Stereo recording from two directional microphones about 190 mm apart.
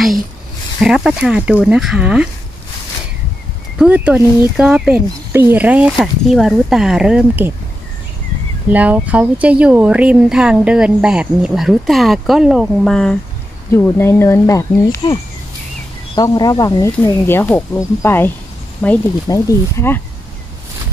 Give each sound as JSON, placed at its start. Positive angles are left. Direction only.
{"t": 0.7, "sound": "speech", "side_deg": 0}
{"t": 3.7, "sound": "speech", "side_deg": -5}
{"t": 8.6, "sound": "speech", "side_deg": -10}
{"t": 16.2, "sound": "speech", "side_deg": 20}